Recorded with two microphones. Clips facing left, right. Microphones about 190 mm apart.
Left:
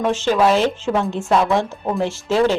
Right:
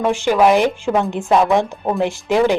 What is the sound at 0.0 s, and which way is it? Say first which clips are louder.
Speech: right 2 dB; 15° right (ahead or behind).